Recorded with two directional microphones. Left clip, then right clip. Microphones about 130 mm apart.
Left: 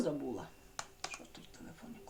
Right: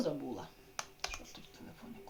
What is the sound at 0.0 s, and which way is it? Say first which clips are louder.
Computer keyboard: even; 15° right (ahead or behind).